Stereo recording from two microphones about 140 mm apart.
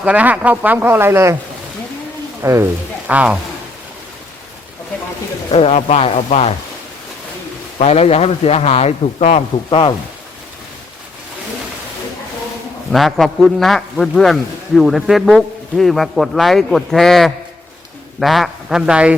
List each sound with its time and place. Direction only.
0.0 s speech: 10° right (ahead or behind)
2.4 s speech: 20° right (ahead or behind)
5.5 s a man's voice: 45° left (ahead or behind)
7.8 s a man's voice: 50° left (ahead or behind)
9.6 s speech: 40° left (ahead or behind)
12.9 s a man's voice: centre (ahead or behind)